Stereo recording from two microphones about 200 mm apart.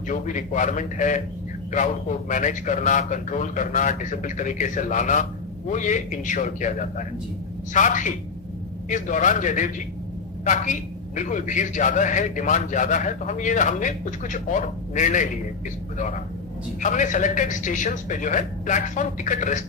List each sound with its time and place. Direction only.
0.1 s a man's voice: 40° left (ahead or behind)